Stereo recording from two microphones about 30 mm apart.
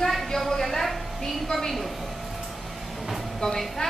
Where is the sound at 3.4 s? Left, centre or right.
Left.